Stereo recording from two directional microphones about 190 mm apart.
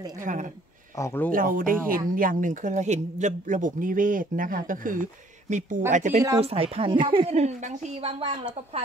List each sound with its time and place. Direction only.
0.2 s speech: 40° right (ahead or behind)
0.9 s speech: 15° left (ahead or behind)
1.3 s a woman's voice: 45° right (ahead or behind); by 8.5 s 30° right (ahead or behind)